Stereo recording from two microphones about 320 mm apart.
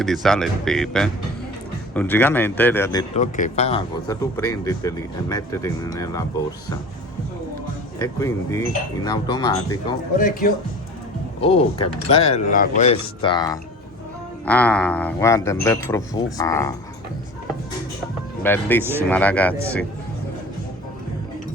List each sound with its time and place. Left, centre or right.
0.0 s speech: centre
7.9 s speech: centre
10.2 s speech: left; by 16.7 s centre
18.4 s speech: centre